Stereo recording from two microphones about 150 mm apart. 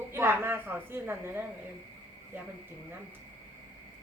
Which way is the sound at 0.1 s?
15° right (ahead or behind).